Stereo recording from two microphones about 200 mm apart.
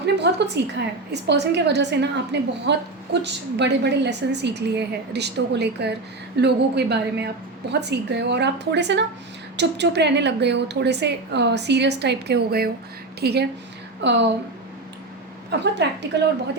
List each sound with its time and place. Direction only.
0.0 s a sound: 60° right (ahead or behind)
1.1 s a woman's voice: 60° right (ahead or behind)
15.6 s a woman's voice: 60° right (ahead or behind)